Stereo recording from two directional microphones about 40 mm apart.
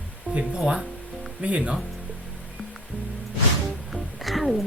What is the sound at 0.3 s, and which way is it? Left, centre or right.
Speech, right.